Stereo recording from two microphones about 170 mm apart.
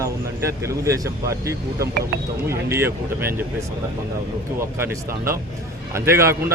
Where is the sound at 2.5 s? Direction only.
15° right (ahead or behind).